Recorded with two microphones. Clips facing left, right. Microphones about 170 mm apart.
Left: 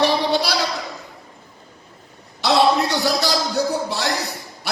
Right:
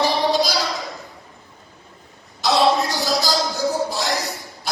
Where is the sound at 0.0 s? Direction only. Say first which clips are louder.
Even; 70° left (ahead or behind).